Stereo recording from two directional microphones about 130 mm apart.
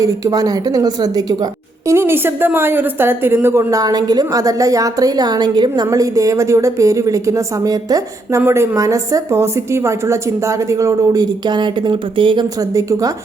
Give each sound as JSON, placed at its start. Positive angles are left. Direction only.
{"t": 0.0, "sound": "a woman's voice", "side_deg": -25}
{"t": 1.9, "sound": "a woman's voice", "side_deg": -20}
{"t": 12.5, "sound": "a woman's voice", "side_deg": -25}